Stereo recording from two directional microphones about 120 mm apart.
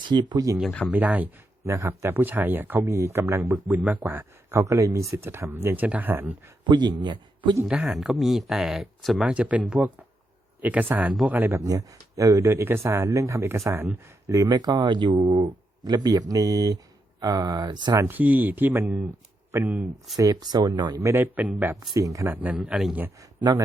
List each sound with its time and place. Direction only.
0.0 s speech: 40° right (ahead or behind)
0.9 s speech: 15° right (ahead or behind)
6.7 s speech: 40° right (ahead or behind)
7.7 s speech: 5° right (ahead or behind)
11.6 s speech: 30° right (ahead or behind); by 15.5 s 45° right (ahead or behind)
15.8 s speech: 35° right (ahead or behind)
18.0 s speech: 15° right (ahead or behind)
20.1 s speech: 30° right (ahead or behind)
21.0 s speech: 20° right (ahead or behind)
21.9 s speech: 30° right (ahead or behind); by 23.0 s 5° right (ahead or behind)
23.4 s speech: 35° right (ahead or behind)